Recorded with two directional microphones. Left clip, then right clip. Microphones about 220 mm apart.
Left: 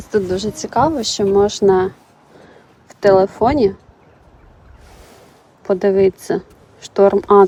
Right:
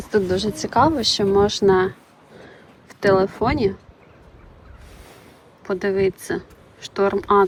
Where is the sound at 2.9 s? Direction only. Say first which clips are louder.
Left 6 dB; 25° left (ahead or behind).